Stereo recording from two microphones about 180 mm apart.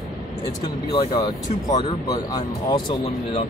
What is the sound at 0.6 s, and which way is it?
Speech, 25° left (ahead or behind).